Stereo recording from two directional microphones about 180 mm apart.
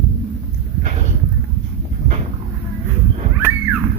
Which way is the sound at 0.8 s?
40° right (ahead or behind).